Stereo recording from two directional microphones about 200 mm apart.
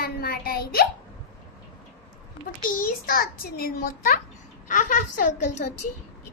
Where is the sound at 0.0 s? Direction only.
50° left (ahead or behind).